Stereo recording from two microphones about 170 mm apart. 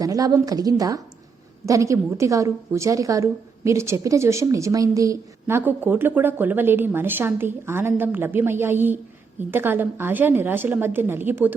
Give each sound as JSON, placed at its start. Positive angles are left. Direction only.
{"t": 0.0, "sound": "a woman's voice", "side_deg": -20}